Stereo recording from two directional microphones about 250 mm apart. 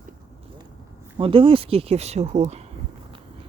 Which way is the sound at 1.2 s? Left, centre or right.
Right.